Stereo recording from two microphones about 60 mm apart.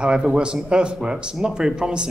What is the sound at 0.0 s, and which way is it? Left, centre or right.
A man's voice, centre.